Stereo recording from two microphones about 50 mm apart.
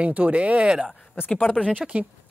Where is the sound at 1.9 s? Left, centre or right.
Right.